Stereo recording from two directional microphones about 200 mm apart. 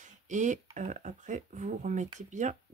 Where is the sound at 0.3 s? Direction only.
35° right (ahead or behind).